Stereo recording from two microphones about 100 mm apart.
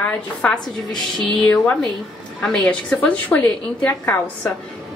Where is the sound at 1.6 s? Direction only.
15° left (ahead or behind).